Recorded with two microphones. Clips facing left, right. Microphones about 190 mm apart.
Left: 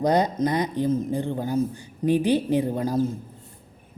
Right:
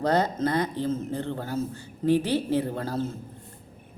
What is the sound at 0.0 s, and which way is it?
Speech, 15° left (ahead or behind).